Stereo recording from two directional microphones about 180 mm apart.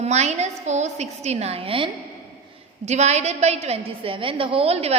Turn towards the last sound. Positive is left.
turn(degrees=-35)  # may be behind; listen again after turning